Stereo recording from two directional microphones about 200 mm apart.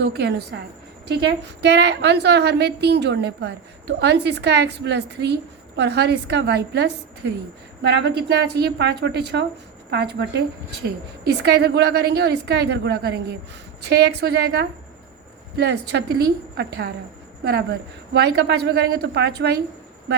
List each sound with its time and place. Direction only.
0.0 s a woman's voice: 55° right (ahead or behind)